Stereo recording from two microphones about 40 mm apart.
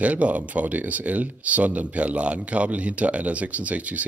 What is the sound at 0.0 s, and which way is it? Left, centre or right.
Speech, right.